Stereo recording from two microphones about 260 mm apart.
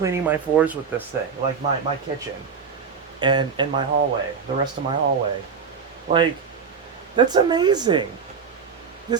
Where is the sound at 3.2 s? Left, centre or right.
Centre.